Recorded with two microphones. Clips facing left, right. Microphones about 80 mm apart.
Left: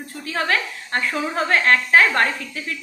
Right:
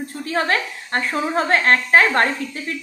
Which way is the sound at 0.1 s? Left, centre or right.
Right.